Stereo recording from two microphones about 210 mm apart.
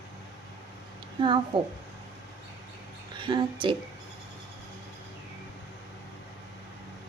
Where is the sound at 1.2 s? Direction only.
25° right (ahead or behind).